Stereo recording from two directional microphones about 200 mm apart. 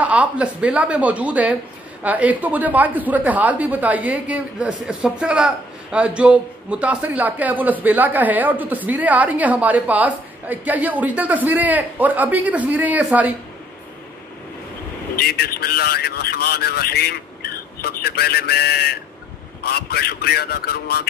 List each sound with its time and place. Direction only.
0.0 s a woman's voice: 5° right (ahead or behind)
15.1 s speech: 50° left (ahead or behind)